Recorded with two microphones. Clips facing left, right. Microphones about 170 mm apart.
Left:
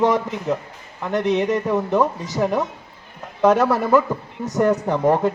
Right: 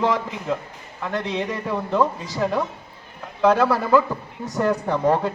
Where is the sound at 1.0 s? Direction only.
20° left (ahead or behind).